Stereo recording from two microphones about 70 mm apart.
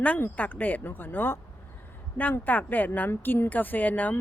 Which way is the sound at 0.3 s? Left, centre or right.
Left.